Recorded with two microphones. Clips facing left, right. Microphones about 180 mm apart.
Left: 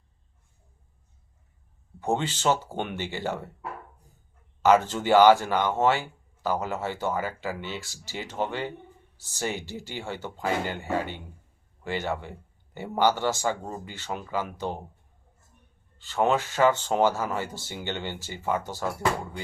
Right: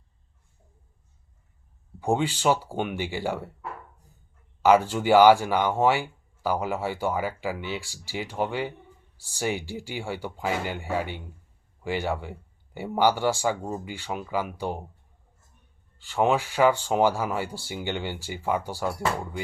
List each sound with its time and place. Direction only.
2.0 s speech: 10° right (ahead or behind)
4.6 s speech: 10° right (ahead or behind)
16.0 s speech: 10° right (ahead or behind)